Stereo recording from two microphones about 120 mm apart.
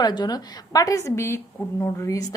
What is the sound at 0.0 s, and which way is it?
A woman's voice, 35° left (ahead or behind).